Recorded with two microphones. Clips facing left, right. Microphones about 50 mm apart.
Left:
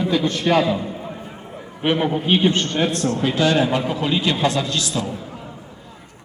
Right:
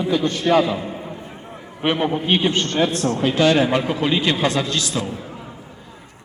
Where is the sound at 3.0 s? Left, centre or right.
Centre.